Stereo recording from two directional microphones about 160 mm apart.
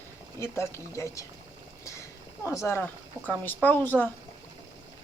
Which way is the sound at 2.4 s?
15° left (ahead or behind).